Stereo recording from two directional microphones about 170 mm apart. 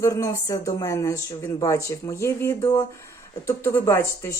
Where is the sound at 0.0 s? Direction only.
15° left (ahead or behind).